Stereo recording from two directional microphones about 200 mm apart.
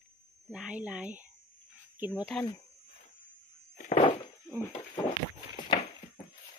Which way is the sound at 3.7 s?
40° left (ahead or behind).